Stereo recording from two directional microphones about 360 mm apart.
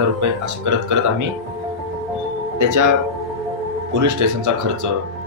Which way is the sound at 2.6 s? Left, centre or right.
Right.